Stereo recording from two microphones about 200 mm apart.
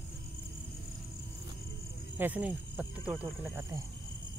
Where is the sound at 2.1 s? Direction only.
5° right (ahead or behind).